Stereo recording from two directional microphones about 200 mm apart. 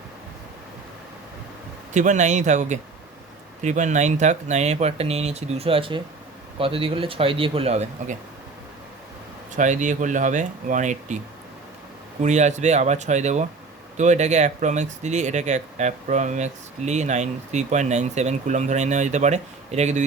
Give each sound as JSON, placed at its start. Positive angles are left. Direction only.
{"t": 1.9, "sound": "speech", "side_deg": -35}
{"t": 9.6, "sound": "speech", "side_deg": -40}
{"t": 12.2, "sound": "speech", "side_deg": -35}